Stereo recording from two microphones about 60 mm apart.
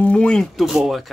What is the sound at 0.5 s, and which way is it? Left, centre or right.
Speech, centre.